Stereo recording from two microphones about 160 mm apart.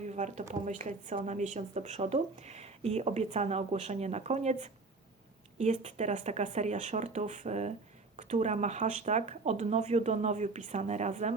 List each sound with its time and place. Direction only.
0.0 s a woman's voice: 45° right (ahead or behind)